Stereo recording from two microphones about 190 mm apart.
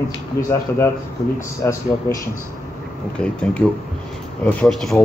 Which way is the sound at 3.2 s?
5° left (ahead or behind).